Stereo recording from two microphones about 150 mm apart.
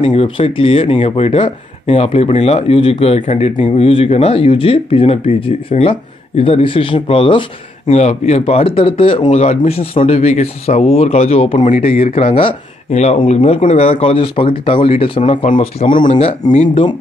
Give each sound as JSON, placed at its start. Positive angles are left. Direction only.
{"t": 0.0, "sound": "speech", "side_deg": 40}
{"t": 15.9, "sound": "speech", "side_deg": 60}